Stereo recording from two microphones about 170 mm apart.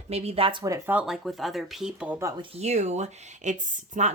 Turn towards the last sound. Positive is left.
turn(degrees=-45)  # may be behind; listen again after turning